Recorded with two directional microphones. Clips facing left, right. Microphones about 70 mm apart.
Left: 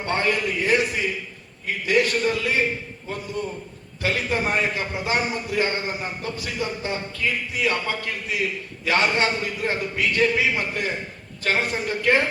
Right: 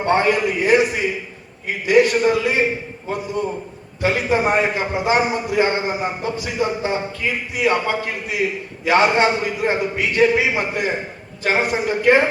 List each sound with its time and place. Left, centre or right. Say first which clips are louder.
0.0 s a man's voice: right 6 dB; centre